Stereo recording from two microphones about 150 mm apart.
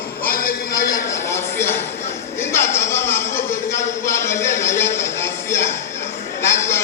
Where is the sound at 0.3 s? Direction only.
80° left.